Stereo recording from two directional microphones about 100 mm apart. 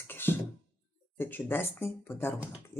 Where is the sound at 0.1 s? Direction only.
20° left (ahead or behind).